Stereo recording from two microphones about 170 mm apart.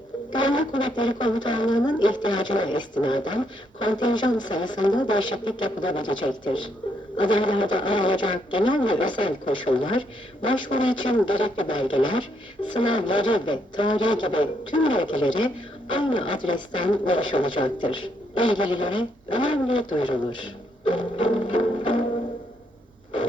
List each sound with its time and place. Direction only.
0.3 s speech: 25° left (ahead or behind)
20.8 s music: 30° left (ahead or behind)